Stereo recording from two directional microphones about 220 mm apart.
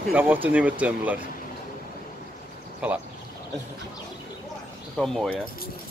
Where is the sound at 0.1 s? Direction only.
10° right (ahead or behind).